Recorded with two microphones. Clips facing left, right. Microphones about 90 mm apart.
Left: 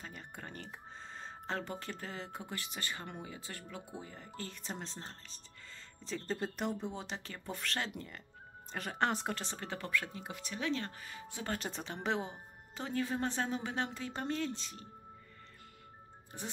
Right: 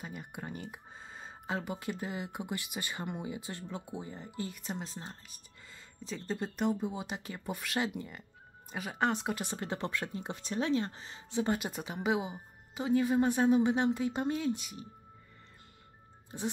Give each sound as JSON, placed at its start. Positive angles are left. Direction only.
{"t": 0.0, "sound": "speech", "side_deg": -10}
{"t": 4.6, "sound": "speech", "side_deg": -5}
{"t": 9.4, "sound": "speech", "side_deg": -15}